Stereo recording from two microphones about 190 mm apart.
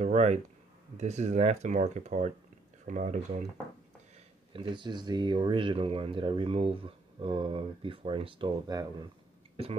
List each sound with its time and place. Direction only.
0.0 s a sound: 35° right (ahead or behind)
0.9 s speech: 35° right (ahead or behind)
4.5 s speech: 25° right (ahead or behind)